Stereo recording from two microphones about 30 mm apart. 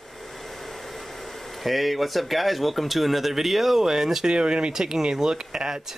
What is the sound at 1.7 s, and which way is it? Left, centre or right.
Speech, centre.